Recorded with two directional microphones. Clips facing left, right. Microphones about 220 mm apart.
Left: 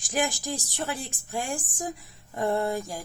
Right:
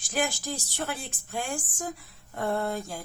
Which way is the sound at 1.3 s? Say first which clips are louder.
Left 1 dB; 15° left (ahead or behind).